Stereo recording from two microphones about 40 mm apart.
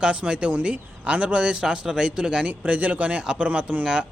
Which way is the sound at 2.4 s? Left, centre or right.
Right.